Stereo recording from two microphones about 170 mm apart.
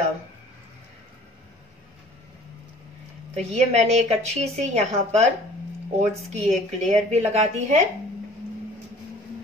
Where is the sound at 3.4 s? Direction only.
40° right (ahead or behind).